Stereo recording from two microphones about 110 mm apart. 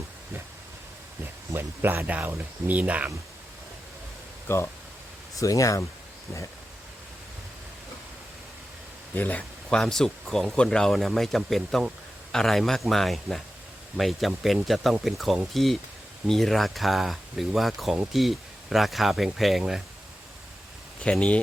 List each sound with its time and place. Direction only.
1.2 s speech: 20° right (ahead or behind)
4.4 s speech: 20° left (ahead or behind)
9.1 s speech: 15° left (ahead or behind)
9.6 s speech: 5° left (ahead or behind)
21.0 s speech: 10° left (ahead or behind)